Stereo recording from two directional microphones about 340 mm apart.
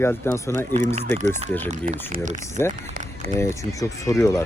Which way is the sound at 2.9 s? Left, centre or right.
Right.